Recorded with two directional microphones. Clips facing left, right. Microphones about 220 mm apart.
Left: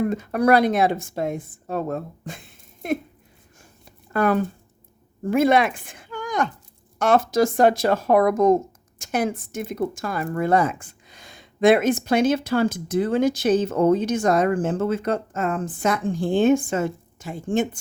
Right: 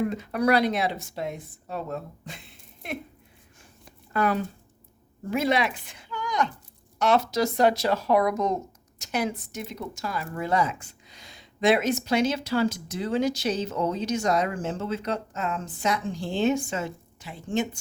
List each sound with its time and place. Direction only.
0.1 s a woman's voice: 50° left (ahead or behind)
4.1 s a woman's voice: 50° left (ahead or behind)